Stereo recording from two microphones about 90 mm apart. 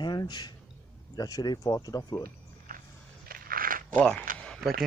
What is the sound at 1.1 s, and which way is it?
Speech, 45° left (ahead or behind).